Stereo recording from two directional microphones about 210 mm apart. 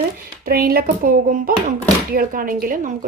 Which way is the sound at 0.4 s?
45° right (ahead or behind).